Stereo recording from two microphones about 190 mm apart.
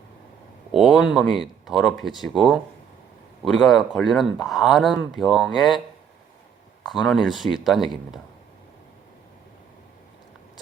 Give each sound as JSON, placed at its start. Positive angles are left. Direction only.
{"t": 0.7, "sound": "speech", "side_deg": 0}
{"t": 6.8, "sound": "speech", "side_deg": 0}